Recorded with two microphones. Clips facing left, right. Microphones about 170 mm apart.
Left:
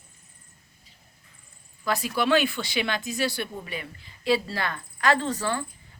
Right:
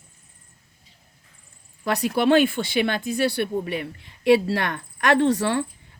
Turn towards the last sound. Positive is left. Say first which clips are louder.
# right 7 dB
turn(degrees=-75)  # may be behind; listen again after turning